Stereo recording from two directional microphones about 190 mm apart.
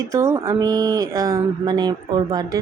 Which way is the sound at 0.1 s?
15° right (ahead or behind).